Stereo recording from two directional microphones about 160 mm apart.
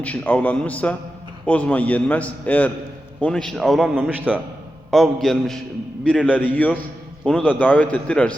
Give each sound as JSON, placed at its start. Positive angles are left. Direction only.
{"t": 0.0, "sound": "a man's voice", "side_deg": 10}